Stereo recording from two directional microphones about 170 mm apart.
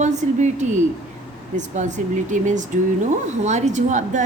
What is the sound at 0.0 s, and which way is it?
A woman's voice, 45° right (ahead or behind).